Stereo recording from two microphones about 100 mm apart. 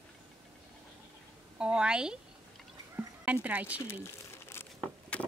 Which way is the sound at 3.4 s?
15° right (ahead or behind).